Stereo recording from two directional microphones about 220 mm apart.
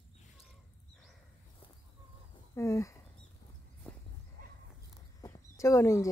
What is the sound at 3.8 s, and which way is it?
Dog, 10° left (ahead or behind).